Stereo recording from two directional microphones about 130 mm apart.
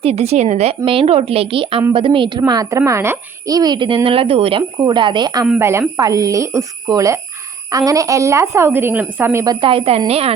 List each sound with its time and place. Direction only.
0.0 s a woman's voice: 50° right (ahead or behind)
2.5 s a child's voice: 30° right (ahead or behind)
5.5 s a woman's voice: 20° right (ahead or behind)
9.6 s a woman's voice: 45° right (ahead or behind)